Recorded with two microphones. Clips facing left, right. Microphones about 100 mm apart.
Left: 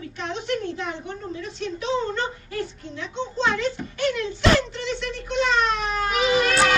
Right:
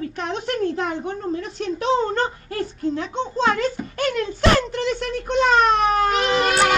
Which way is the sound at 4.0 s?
45° right (ahead or behind).